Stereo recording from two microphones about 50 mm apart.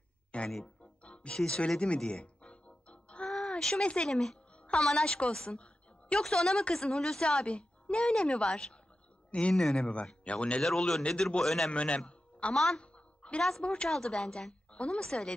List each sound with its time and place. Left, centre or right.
0.3 s a sound: left
1.0 s music: left
3.3 s a sound: centre
3.8 s a man's voice: left
4.1 s a woman's voice: centre
11.7 s a man's voice: left
12.1 s music: left
12.5 s a sound: centre
13.4 s speech: centre